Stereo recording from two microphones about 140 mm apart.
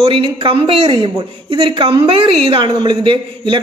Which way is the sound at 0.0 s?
35° right (ahead or behind).